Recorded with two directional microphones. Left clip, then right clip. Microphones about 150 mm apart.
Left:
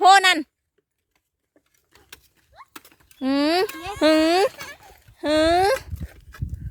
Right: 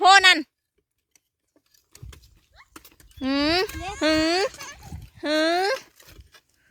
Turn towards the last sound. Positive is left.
turn(degrees=15)  # may be behind; listen again after turning